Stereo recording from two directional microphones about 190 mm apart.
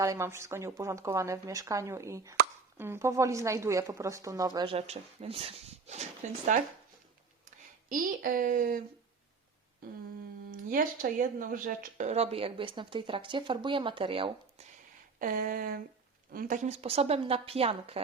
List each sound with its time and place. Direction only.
0.0 s speech: 15° right (ahead or behind); by 6.6 s 40° right (ahead or behind)
7.9 s speech: 45° right (ahead or behind)
10.5 s speech: 45° right (ahead or behind); by 14.7 s 30° right (ahead or behind)
15.2 s a woman's voice: 45° right (ahead or behind)